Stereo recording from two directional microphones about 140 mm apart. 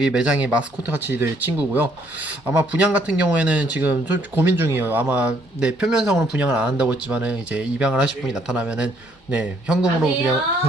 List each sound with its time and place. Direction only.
0.0 s speech: 5° right (ahead or behind)